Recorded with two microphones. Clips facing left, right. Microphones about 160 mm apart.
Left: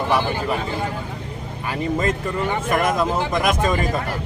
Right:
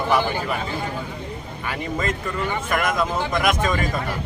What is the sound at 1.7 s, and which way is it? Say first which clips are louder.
A man's voice: left 4 dB; 35° left (ahead or behind).